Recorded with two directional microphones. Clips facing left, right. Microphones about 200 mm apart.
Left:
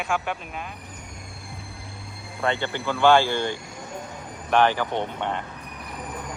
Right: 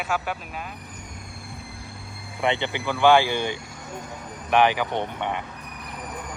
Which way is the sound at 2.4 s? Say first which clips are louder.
Right 1 dB; 20° right (ahead or behind).